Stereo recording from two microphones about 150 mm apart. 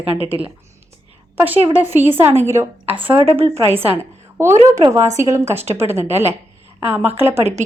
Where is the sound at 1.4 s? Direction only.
15° right (ahead or behind).